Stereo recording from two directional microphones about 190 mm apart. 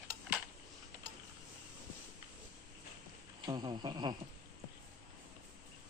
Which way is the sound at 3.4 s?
20° right (ahead or behind).